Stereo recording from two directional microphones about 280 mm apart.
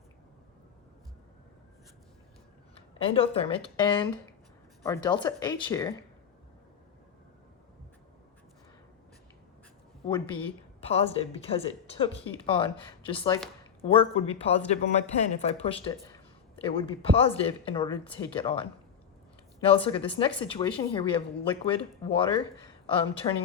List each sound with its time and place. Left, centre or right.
2.7 s speech: centre
10.1 s a woman's voice: centre